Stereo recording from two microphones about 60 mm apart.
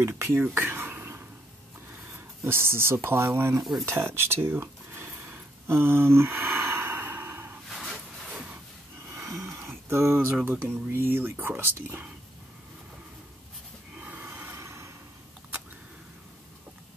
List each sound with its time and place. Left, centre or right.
0.0 s a sound: right
2.4 s speech: right
5.7 s sigh: right
7.7 s a sound: centre
9.2 s speech: right
14.0 s snort: right
14.6 s vehicle: right